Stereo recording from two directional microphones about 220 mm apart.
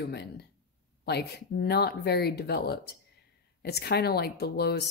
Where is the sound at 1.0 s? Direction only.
45° left (ahead or behind).